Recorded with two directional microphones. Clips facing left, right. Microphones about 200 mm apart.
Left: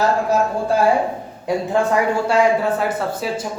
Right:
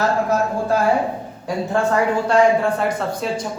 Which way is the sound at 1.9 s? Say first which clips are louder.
Even; 5° left (ahead or behind).